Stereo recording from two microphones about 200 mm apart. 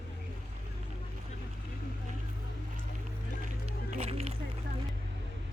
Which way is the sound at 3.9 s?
30° right (ahead or behind).